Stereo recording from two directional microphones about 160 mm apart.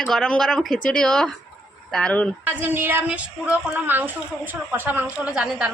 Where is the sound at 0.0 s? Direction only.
5° left (ahead or behind).